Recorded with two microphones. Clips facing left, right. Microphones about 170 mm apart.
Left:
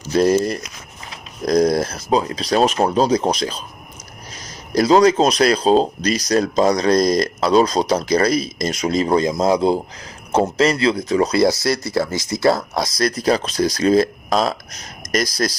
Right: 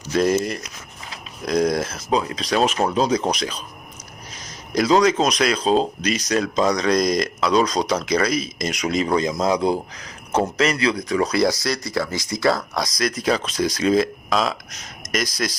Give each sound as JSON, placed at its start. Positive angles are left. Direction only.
{"t": 0.1, "sound": "speech", "side_deg": 35}